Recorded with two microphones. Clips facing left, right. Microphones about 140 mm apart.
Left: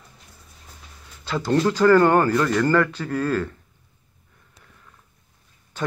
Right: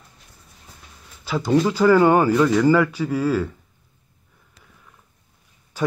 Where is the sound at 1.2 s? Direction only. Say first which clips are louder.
Right 2 dB; 5° right (ahead or behind).